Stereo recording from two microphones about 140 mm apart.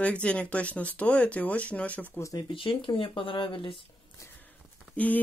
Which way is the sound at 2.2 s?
25° left (ahead or behind).